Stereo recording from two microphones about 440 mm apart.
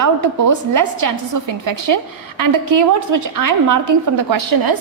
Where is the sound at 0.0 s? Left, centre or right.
Right.